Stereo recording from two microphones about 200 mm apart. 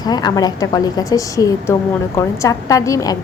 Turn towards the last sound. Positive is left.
turn(degrees=15)  # may be behind; listen again after turning